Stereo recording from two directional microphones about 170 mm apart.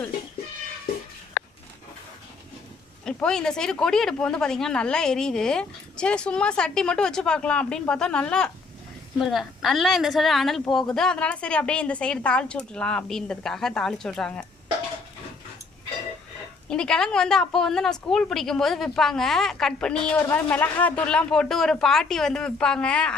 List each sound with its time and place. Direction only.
1.4 s a sound: 75° left (ahead or behind)
3.0 s speech: 5° left (ahead or behind)
16.6 s speech: 5° left (ahead or behind)